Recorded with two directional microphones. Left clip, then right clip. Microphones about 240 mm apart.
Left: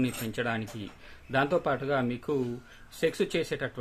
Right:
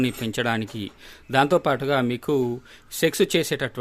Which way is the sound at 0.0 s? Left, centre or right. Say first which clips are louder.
Right 6 dB; right.